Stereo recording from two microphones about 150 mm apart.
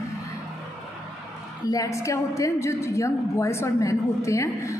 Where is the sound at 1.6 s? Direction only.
20° left (ahead or behind).